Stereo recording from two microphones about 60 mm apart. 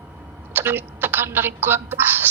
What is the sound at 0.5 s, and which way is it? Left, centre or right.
A woman's voice, right.